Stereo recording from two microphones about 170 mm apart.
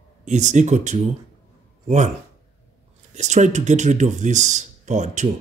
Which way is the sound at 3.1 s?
45° right (ahead or behind).